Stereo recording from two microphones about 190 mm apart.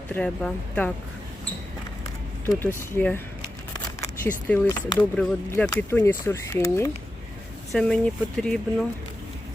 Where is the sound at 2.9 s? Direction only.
10° left (ahead or behind).